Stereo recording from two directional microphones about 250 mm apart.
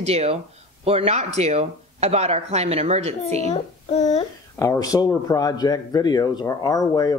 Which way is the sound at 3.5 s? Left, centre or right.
Left.